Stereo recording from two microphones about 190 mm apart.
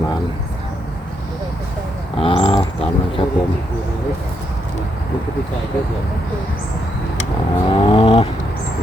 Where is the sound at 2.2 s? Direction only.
30° left (ahead or behind).